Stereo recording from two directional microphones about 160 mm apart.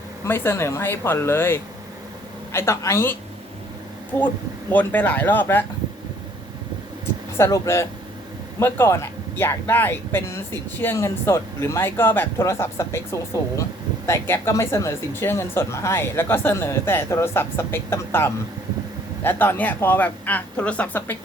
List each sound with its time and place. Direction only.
0.3 s speech: 15° left (ahead or behind)
4.7 s speech: 10° left (ahead or behind)
7.3 s speech: 20° left (ahead or behind)